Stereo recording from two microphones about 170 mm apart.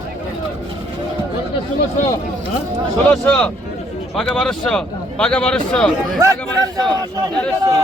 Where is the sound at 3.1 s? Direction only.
5° left (ahead or behind).